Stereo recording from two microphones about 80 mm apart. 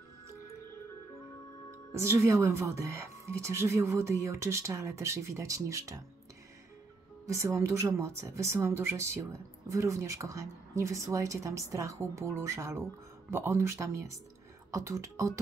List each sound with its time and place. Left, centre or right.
2.0 s speech: right
7.2 s speech: right